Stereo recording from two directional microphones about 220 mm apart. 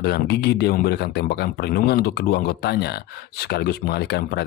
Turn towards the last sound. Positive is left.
turn(degrees=45)  # may be behind; listen again after turning